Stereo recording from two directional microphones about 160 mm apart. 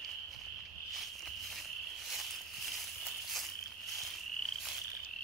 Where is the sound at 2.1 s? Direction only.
Centre (ahead or behind).